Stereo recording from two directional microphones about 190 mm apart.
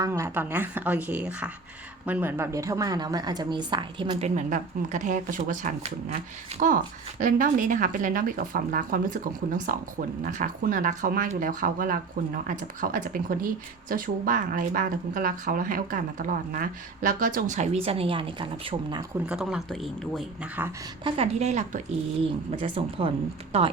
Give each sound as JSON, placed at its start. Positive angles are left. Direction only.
{"t": 0.0, "sound": "a woman's voice", "side_deg": -15}
{"t": 4.4, "sound": "speech", "side_deg": -40}
{"t": 19.3, "sound": "speech", "side_deg": -5}
{"t": 21.0, "sound": "a woman's voice", "side_deg": -30}